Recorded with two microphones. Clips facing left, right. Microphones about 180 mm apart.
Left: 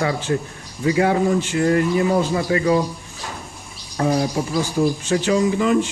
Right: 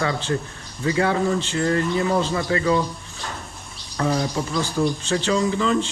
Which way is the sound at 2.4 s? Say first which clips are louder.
Left 3 dB; 25° left (ahead or behind).